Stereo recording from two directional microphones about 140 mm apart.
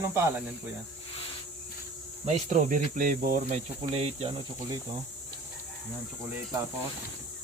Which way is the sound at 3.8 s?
45° right (ahead or behind).